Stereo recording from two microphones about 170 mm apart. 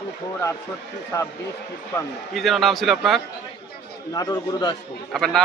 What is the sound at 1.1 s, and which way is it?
Speech, 20° left (ahead or behind).